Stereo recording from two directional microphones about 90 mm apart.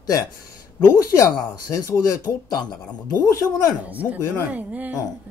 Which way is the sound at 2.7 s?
40° left (ahead or behind).